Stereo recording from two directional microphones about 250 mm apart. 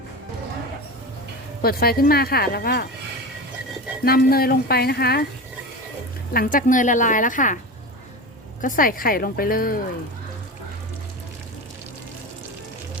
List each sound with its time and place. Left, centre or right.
1.6 s speech: left
4.0 s speech: left
6.3 s speech: left
8.6 s speech: left